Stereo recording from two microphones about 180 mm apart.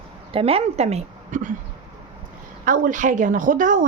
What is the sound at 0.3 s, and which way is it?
A woman's voice, 35° right (ahead or behind).